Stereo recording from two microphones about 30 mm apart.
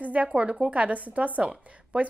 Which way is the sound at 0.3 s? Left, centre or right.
Right.